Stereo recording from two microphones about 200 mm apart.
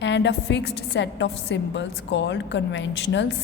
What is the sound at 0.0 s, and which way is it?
A woman's voice, 60° left (ahead or behind).